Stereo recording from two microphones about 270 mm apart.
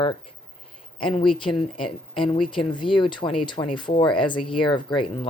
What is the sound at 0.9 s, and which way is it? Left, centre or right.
Speech, centre.